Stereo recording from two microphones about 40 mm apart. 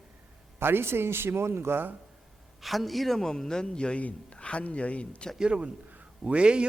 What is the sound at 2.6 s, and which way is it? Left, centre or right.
Speech, centre.